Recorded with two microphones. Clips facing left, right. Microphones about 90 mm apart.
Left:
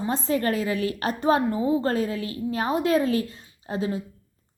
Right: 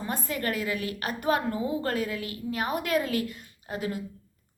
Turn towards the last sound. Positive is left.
turn(degrees=25)  # may be behind; listen again after turning